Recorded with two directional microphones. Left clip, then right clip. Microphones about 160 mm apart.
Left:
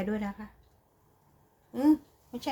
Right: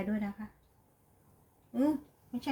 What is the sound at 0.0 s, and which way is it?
Speech, 90° left.